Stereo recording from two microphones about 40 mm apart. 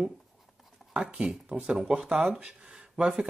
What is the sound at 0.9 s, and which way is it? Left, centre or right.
Speech, right.